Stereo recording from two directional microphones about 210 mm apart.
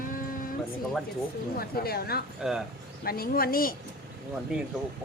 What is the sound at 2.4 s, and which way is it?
Speech, centre (ahead or behind).